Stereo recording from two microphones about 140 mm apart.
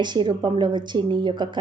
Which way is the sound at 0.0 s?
30° right (ahead or behind).